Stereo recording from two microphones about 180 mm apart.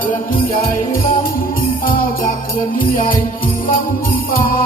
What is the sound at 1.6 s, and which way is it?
Jingle bell, 55° left (ahead or behind).